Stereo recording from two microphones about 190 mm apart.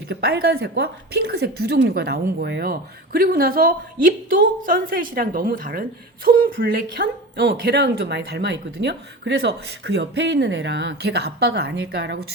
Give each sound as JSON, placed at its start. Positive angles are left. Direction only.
{"t": 0.1, "sound": "a woman's voice", "side_deg": -55}